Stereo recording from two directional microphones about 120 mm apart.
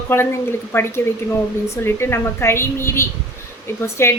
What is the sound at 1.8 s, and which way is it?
A woman's voice, 20° left (ahead or behind).